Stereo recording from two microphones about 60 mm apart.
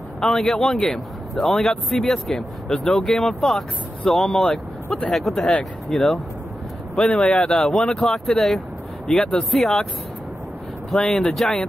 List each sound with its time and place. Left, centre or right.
0.2 s speech: centre
11.0 s speech: centre